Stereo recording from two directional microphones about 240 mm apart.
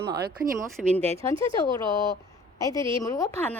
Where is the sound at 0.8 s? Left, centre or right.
Centre.